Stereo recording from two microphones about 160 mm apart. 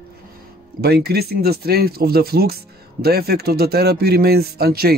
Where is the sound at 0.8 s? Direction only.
90° right.